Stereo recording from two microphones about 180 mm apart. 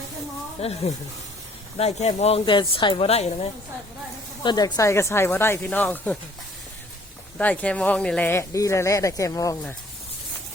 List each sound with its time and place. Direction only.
0.6 s speech: 35° left (ahead or behind)
1.8 s speech: 35° left (ahead or behind)
2.4 s a woman's voice: 25° left (ahead or behind)
4.4 s speech: 20° left (ahead or behind)
7.3 s speech: 10° left (ahead or behind)